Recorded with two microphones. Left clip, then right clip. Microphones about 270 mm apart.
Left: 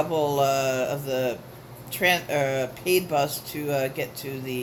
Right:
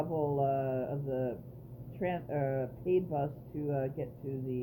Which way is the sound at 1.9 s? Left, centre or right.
Centre.